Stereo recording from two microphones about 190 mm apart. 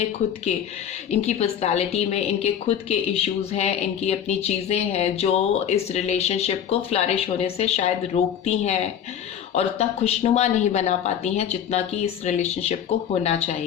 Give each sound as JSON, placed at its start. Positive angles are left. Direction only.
{"t": 1.1, "sound": "a woman's voice", "side_deg": 35}